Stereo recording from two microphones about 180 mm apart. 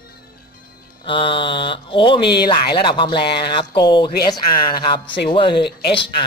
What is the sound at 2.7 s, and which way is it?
Speech, 25° left (ahead or behind).